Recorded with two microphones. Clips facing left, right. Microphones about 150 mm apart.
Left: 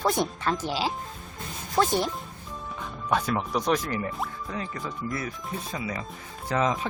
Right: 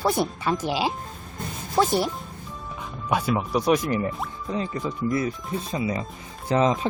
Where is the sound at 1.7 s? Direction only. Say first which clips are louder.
Right 2 dB; 5° right (ahead or behind).